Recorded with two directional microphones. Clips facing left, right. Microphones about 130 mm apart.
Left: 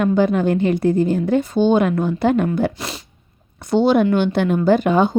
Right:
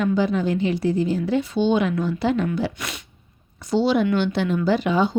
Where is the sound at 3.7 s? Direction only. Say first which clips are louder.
Left 4 dB; 55° left (ahead or behind).